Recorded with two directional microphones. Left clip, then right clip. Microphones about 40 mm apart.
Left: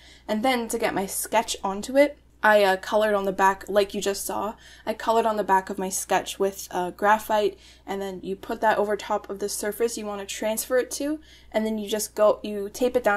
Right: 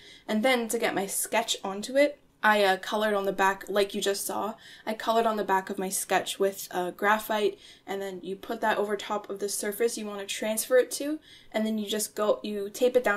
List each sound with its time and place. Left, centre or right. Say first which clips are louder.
0.3 s speech: left 1 dB; left